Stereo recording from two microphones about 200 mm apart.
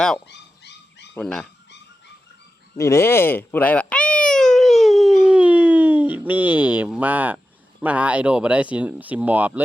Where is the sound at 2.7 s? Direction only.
15° left (ahead or behind); by 7.3 s 10° right (ahead or behind).